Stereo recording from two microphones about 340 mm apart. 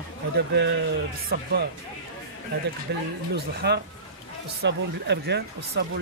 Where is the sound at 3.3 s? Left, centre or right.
Right.